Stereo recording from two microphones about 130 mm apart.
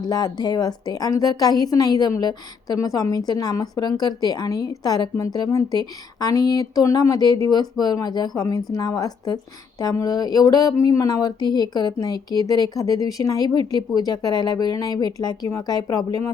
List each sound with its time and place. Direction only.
0.0 s a woman's voice: 30° left (ahead or behind)